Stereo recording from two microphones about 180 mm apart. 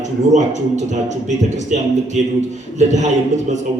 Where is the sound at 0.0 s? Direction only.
40° right (ahead or behind).